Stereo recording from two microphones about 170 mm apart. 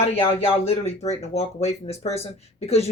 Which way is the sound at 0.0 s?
35° left (ahead or behind).